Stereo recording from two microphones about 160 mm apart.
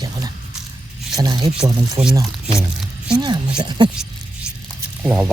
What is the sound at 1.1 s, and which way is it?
Speech, 25° right (ahead or behind).